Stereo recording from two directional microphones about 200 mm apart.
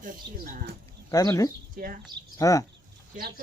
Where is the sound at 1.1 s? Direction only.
15° left (ahead or behind).